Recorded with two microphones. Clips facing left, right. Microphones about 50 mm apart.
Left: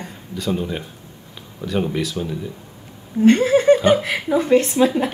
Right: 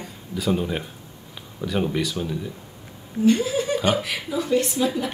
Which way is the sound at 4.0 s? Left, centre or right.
Left.